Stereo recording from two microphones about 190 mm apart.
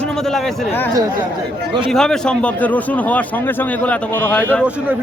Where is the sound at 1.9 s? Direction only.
5° left (ahead or behind).